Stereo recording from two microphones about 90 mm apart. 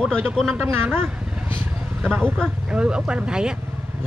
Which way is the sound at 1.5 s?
20° right (ahead or behind).